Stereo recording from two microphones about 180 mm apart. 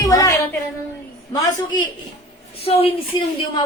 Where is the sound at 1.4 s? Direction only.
25° left (ahead or behind).